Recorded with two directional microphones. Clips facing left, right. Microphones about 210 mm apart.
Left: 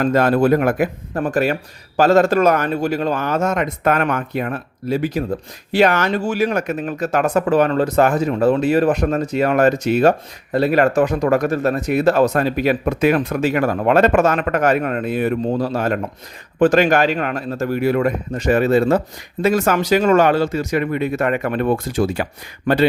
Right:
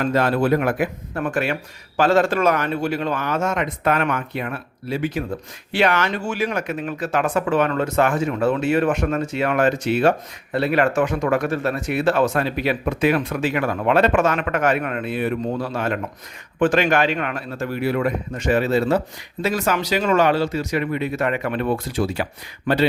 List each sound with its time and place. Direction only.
0.0 s a man's voice: 45° left (ahead or behind)